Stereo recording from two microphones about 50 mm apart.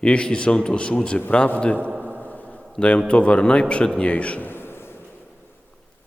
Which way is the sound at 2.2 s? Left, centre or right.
Left.